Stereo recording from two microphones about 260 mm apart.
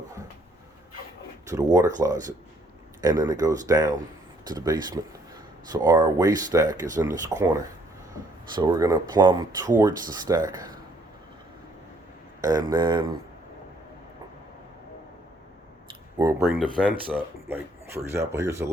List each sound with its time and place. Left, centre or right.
1.7 s speech: centre
12.4 s speech: centre
16.1 s speech: centre